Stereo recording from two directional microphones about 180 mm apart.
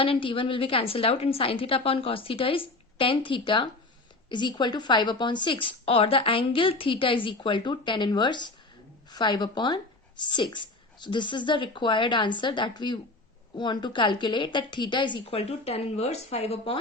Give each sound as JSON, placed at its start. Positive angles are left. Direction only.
{"t": 0.0, "sound": "a woman's voice", "side_deg": 30}